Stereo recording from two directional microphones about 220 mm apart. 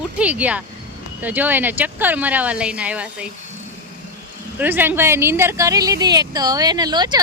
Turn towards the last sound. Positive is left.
turn(degrees=-20)  # may be behind; listen again after turning